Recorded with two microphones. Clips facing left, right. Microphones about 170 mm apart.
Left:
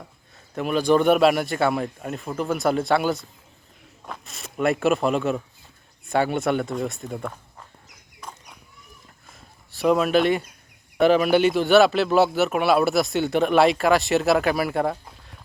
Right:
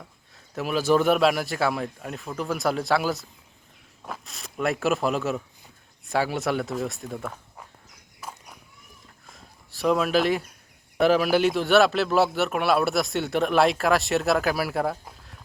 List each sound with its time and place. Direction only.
0.3 s a man's voice: 5° right (ahead or behind)
8.2 s a sound: 5° right (ahead or behind)
10.9 s a man's voice: centre (ahead or behind)